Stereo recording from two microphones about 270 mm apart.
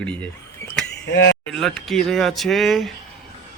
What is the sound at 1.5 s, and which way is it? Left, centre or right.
A man's voice, centre.